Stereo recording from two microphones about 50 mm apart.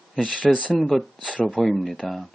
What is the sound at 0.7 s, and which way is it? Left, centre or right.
Speech, centre.